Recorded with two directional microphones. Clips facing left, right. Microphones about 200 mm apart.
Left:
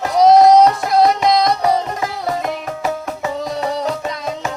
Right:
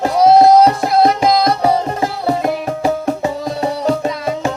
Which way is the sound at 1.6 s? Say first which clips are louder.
Right 2 dB; 30° right (ahead or behind).